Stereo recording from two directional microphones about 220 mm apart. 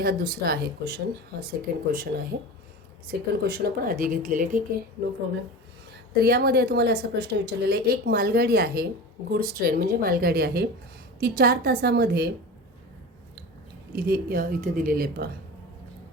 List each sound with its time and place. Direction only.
0.0 s a woman's voice: 45° right (ahead or behind)
6.1 s speech: 45° right (ahead or behind)
13.9 s speech: 45° right (ahead or behind)